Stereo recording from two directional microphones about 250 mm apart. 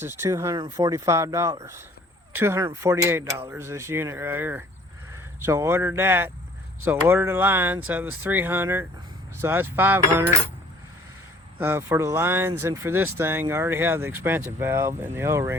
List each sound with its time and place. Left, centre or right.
0.0 s speech: centre
11.6 s speech: centre